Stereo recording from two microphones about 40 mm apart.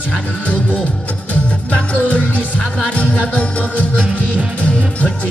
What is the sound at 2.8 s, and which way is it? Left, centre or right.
Music, left.